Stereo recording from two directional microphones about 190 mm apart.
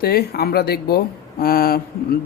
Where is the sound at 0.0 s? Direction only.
55° left (ahead or behind).